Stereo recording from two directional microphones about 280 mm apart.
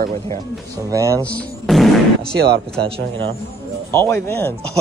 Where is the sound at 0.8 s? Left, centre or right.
Centre.